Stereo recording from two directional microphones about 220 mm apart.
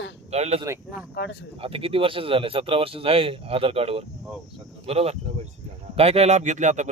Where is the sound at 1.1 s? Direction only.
50° left (ahead or behind).